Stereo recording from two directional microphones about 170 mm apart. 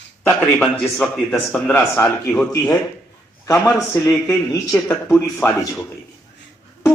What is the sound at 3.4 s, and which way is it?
Speech, 20° left (ahead or behind).